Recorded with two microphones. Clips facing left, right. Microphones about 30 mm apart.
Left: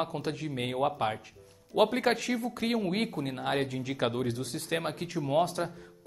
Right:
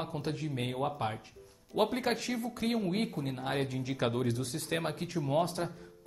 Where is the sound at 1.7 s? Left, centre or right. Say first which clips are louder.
Left 5 dB; left.